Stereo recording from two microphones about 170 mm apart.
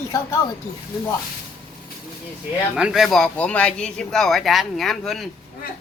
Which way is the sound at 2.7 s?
5° right (ahead or behind).